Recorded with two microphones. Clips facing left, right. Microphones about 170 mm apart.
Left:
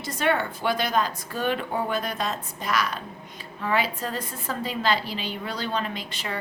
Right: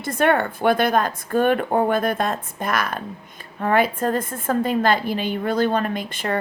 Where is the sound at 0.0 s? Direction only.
55° right (ahead or behind).